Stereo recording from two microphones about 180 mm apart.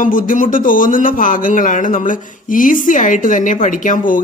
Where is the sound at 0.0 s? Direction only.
50° left (ahead or behind).